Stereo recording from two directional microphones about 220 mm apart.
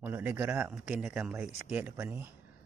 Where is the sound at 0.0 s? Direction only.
10° right (ahead or behind).